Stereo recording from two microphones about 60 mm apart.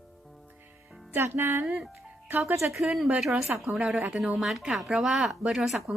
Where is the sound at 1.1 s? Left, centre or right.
Right.